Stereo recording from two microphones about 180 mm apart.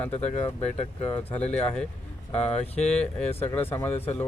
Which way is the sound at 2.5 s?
35° left (ahead or behind).